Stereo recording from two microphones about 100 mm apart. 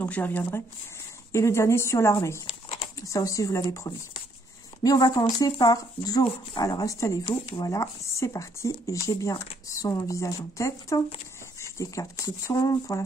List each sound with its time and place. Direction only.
0.0 s a woman's voice: 15° left (ahead or behind); by 13.0 s 35° left (ahead or behind)